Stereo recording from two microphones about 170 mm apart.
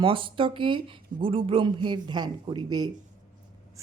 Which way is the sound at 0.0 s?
30° right (ahead or behind).